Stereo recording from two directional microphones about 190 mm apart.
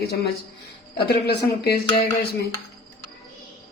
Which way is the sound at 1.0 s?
55° left (ahead or behind).